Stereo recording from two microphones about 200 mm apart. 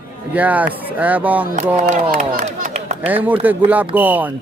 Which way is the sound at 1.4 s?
40° right (ahead or behind).